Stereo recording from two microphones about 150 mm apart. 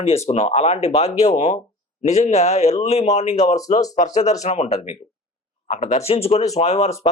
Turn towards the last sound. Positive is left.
turn(degrees=45)  # may be behind; listen again after turning